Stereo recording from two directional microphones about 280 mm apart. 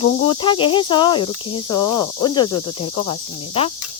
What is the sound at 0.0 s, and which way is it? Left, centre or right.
Speech, centre.